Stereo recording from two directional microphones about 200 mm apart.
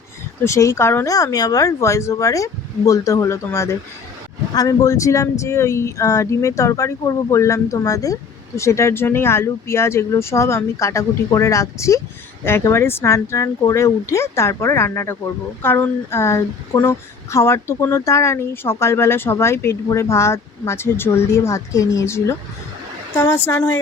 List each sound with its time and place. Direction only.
0.4 s speech: 15° left (ahead or behind)